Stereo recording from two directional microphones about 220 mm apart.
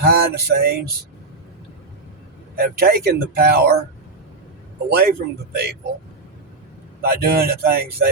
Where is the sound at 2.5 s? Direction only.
40° right (ahead or behind).